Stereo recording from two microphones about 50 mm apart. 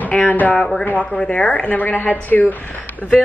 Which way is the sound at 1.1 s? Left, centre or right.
Left.